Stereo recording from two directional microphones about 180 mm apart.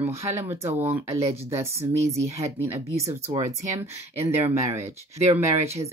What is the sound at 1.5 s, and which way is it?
Speech, 15° right (ahead or behind).